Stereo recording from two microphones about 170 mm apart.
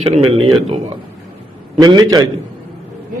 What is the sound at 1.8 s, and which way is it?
Speech, 25° right (ahead or behind).